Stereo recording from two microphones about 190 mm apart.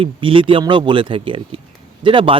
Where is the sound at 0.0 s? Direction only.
25° right (ahead or behind).